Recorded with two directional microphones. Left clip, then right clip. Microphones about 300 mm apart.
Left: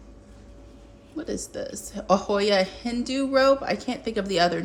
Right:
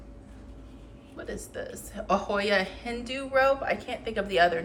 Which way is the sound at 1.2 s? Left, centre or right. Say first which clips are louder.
Left 5 dB; centre.